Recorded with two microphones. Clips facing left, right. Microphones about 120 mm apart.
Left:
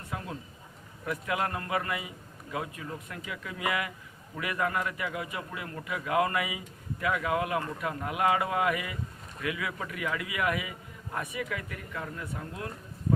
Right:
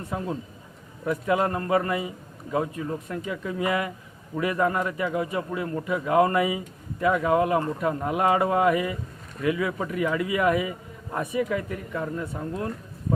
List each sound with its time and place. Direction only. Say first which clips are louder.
0.1 s a man's voice: right 7 dB; 30° right (ahead or behind)